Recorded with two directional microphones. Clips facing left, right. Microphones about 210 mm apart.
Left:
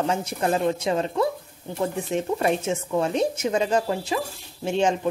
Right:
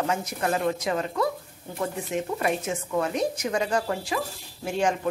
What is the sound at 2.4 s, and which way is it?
Speech, 25° left (ahead or behind).